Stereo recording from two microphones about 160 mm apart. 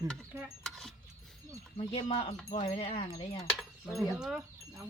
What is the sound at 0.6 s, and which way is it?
Keys jangling, centre (ahead or behind).